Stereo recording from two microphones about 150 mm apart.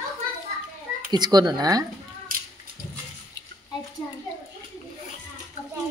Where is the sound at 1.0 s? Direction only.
30° right (ahead or behind).